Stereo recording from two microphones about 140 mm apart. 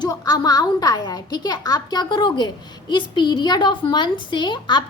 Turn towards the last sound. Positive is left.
turn(degrees=35)  # may be behind; listen again after turning